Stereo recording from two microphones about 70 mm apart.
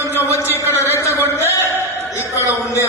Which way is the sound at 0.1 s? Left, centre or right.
Left.